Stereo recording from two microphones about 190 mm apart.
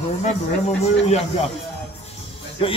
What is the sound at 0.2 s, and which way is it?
Speech, 35° left (ahead or behind).